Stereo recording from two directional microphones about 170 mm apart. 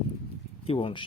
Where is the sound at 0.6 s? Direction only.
35° left (ahead or behind).